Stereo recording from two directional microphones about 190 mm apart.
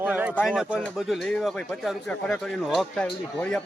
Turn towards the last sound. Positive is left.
turn(degrees=5)  # may be behind; listen again after turning